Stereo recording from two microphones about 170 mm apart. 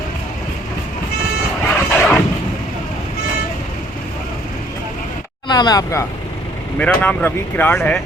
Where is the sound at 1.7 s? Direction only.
10° left (ahead or behind).